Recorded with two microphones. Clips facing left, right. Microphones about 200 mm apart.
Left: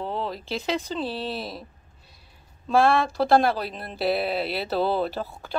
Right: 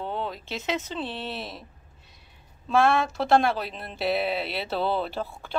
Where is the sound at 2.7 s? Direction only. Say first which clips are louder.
Left 2 dB; 35° left (ahead or behind).